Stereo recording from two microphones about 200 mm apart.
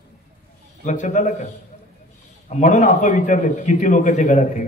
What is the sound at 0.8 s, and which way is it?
Speech, 40° left (ahead or behind).